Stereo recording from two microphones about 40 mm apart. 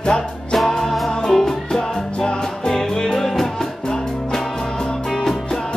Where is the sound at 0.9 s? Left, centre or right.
Centre.